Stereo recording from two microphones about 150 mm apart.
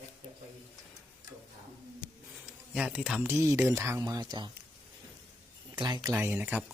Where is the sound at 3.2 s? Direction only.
15° right (ahead or behind).